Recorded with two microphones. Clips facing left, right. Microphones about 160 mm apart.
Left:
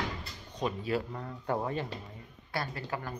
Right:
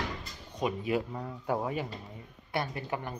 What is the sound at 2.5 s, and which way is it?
Speech, 20° right (ahead or behind).